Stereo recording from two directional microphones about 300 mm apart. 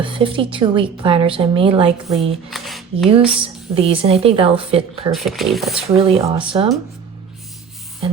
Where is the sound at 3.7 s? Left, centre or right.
Centre.